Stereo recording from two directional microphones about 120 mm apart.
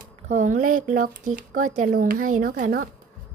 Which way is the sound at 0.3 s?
90° right.